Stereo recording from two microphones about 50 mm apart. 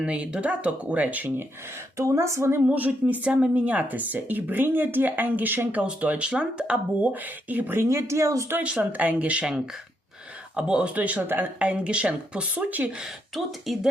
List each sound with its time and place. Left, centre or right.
0.0 s speech: right
2.0 s speech: right
2.6 s speech: right
5.8 s speech: right
7.1 s speech: right
7.8 s speech: right
8.8 s speech: right
10.5 s speech: centre
10.9 s speech: right
13.7 s speech: centre